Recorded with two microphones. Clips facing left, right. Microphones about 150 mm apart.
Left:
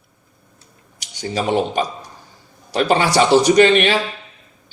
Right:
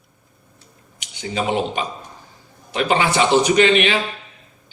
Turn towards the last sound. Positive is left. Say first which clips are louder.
# left 3 dB
turn(degrees=40)  # may be behind; listen again after turning